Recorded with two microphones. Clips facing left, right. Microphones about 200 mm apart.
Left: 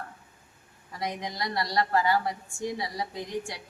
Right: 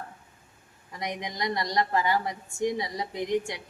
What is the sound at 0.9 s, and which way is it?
A woman's voice, 20° right (ahead or behind).